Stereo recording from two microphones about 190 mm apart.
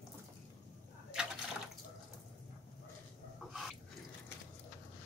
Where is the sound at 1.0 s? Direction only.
5° right (ahead or behind).